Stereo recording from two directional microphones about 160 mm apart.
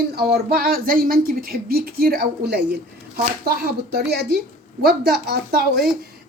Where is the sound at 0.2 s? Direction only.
70° right (ahead or behind).